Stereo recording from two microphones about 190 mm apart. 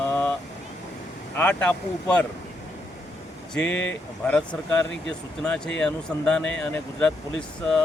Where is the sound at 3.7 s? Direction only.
80° left.